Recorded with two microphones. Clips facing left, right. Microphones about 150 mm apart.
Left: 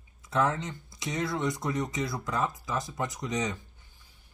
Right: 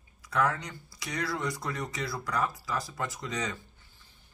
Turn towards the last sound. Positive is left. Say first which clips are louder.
# left 3 dB
turn(degrees=20)  # may be behind; listen again after turning